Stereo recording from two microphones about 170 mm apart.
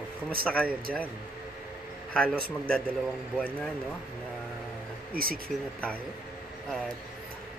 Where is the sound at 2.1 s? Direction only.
5° left (ahead or behind).